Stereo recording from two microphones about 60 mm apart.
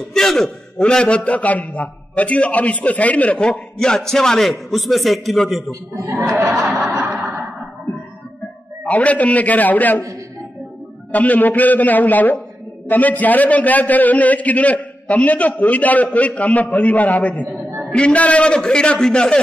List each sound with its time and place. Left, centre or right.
0.0 s a man's voice: centre
6.1 s chuckle: centre
6.8 s chuckle: right
8.8 s a man's voice: left
11.1 s a man's voice: left